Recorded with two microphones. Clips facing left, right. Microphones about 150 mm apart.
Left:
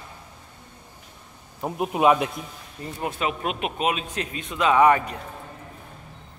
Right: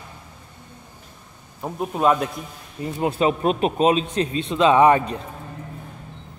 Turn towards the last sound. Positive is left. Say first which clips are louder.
# right 3 dB
turn(degrees=-25)  # may be behind; listen again after turning